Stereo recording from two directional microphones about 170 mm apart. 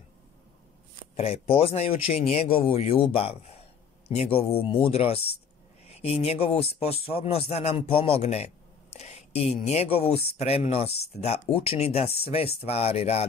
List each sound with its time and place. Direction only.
1.1 s speech: 35° left (ahead or behind)